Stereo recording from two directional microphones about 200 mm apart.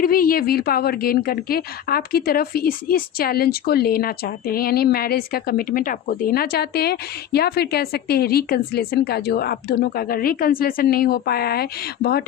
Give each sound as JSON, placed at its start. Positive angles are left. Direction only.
{"t": 0.0, "sound": "a woman's voice", "side_deg": 45}